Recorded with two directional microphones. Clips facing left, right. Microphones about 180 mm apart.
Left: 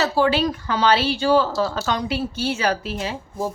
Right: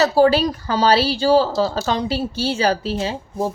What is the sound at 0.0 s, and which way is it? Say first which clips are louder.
A woman's voice: right 5 dB; 40° right (ahead or behind).